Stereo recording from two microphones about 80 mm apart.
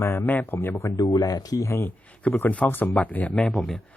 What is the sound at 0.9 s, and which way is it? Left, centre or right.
Speech, left.